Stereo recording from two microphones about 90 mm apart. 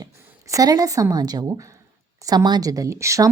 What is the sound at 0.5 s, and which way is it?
A woman's voice, 45° right (ahead or behind).